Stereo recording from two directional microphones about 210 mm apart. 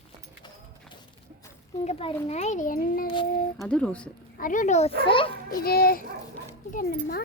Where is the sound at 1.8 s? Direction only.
30° left (ahead or behind).